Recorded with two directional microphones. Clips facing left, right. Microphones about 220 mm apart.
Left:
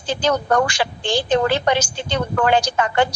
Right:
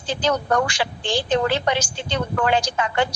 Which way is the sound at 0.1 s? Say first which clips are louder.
Left 2 dB; 50° left (ahead or behind).